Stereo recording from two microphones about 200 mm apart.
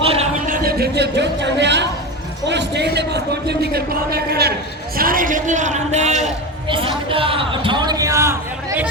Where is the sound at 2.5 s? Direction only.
60° right (ahead or behind); by 6.9 s 25° right (ahead or behind).